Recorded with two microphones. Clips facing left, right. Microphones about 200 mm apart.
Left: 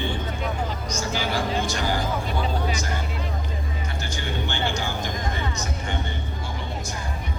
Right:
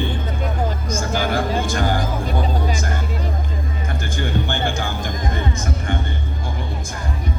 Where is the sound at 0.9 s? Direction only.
50° right (ahead or behind).